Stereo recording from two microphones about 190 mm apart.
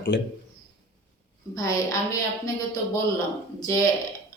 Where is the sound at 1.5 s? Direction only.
15° left (ahead or behind).